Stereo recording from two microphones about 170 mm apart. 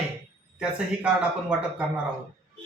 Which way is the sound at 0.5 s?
5° right (ahead or behind).